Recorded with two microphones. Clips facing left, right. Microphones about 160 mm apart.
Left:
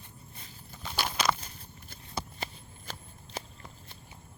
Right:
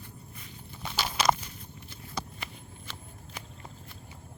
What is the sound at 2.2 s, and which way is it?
Shuffling cards, 35° left (ahead or behind).